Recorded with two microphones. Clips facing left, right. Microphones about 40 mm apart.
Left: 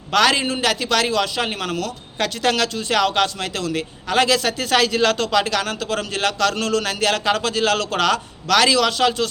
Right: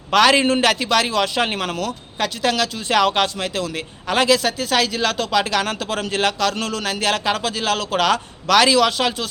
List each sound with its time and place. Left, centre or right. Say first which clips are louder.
0.1 s a man's voice: right 3 dB; right
0.4 s a man's voice: right 4 dB; right
0.8 s a man's voice: right 1 dB; centre
1.2 s a man's voice: right 2 dB; right
2.1 s speech: left 1 dB; centre
2.7 s a man's voice: right 1 dB; centre
4.4 s a man's voice: left 1 dB; centre
5.5 s a man's voice: right 1 dB; right
6.4 s a man's voice: left 2 dB; centre